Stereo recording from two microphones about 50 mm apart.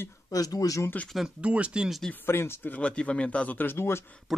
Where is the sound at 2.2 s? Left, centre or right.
Left.